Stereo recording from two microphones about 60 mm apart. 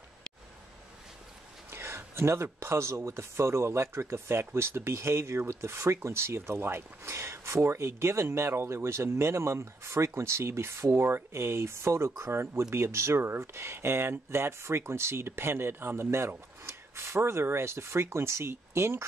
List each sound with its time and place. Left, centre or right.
1.7 s speech: right